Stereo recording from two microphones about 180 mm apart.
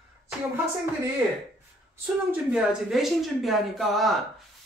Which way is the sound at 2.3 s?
5° right (ahead or behind).